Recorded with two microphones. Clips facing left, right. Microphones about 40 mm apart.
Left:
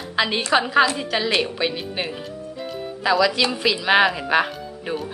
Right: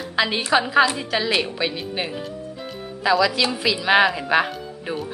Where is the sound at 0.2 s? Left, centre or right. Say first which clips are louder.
Even; centre.